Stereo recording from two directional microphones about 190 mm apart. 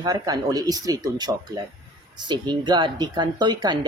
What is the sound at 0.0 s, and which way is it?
Speech, 20° right (ahead or behind).